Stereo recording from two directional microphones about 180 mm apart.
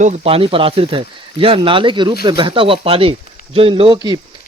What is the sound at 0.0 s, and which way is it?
Speech, 35° right (ahead or behind).